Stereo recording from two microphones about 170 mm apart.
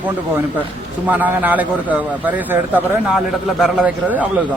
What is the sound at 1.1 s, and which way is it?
Speech, 10° right (ahead or behind).